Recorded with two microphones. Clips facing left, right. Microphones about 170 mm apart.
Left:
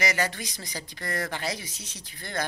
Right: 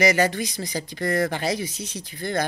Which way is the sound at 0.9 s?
25° right (ahead or behind).